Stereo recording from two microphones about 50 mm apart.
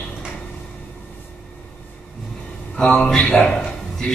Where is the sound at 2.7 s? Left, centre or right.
Left.